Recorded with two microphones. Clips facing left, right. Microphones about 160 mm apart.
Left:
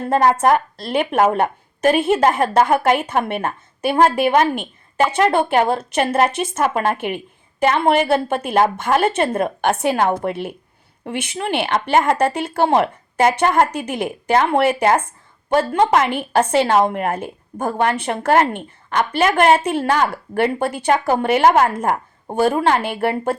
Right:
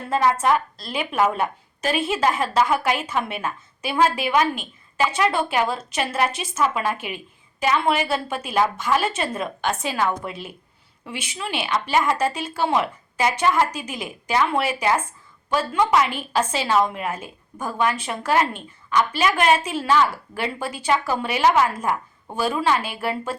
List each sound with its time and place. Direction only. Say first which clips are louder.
0.1 s a woman's voice: left 4 dB; 60° left (ahead or behind)